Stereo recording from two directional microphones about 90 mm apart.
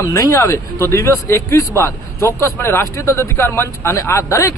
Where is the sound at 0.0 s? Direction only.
35° left (ahead or behind).